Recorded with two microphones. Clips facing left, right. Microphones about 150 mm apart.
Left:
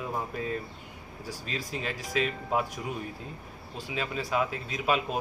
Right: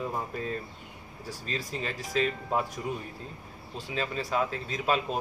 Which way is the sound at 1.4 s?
5° left (ahead or behind).